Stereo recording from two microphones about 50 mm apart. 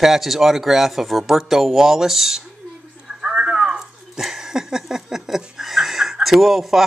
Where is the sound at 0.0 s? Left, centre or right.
Centre.